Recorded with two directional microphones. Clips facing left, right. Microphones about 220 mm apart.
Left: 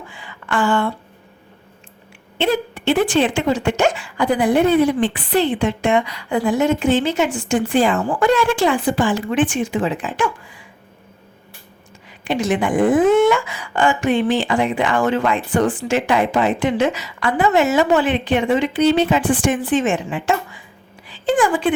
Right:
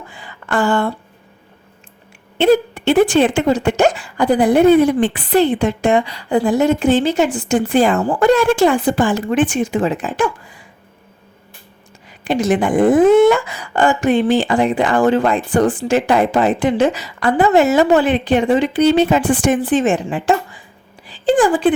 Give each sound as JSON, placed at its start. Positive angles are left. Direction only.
{"t": 0.1, "sound": "a sound", "side_deg": -40}
{"t": 2.4, "sound": "a woman's voice", "side_deg": -45}
{"t": 12.2, "sound": "a woman's voice", "side_deg": -35}